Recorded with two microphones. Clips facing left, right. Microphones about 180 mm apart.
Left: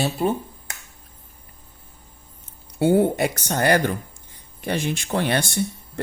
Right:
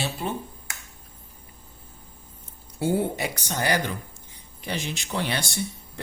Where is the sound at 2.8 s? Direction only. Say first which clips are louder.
Left 7 dB; 60° left (ahead or behind).